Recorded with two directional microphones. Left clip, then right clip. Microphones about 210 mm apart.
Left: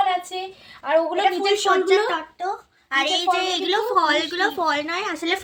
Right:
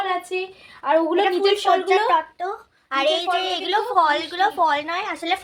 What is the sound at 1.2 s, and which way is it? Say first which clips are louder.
A woman's voice: right 1 dB; 10° right (ahead or behind).